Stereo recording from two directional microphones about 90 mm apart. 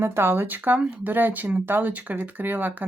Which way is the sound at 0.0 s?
25° right (ahead or behind).